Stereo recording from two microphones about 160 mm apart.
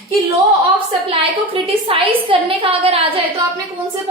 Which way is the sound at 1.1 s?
35° right (ahead or behind).